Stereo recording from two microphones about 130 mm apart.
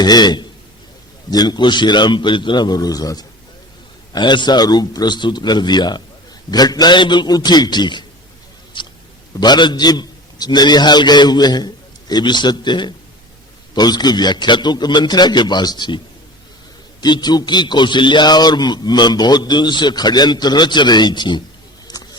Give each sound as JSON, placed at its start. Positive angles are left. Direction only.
{"t": 0.0, "sound": "a man's voice", "side_deg": 35}
{"t": 8.7, "sound": "a sound", "side_deg": 40}
{"t": 9.4, "sound": "a man's voice", "side_deg": 35}
{"t": 17.0, "sound": "a man's voice", "side_deg": 30}